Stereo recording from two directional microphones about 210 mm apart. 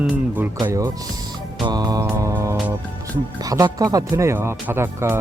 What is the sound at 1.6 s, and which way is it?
Music, 20° right (ahead or behind).